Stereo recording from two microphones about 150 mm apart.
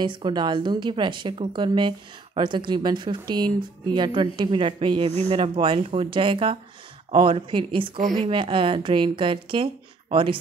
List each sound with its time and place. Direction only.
0.0 s a woman's voice: 30° right (ahead or behind)